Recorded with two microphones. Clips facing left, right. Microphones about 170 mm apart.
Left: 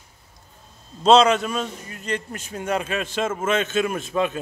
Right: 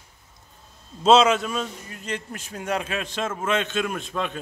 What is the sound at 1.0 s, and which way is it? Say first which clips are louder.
A man's voice: left 2 dB; 5° right (ahead or behind).